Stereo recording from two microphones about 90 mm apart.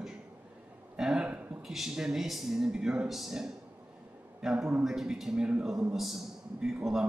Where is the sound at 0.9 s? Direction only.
5° right (ahead or behind).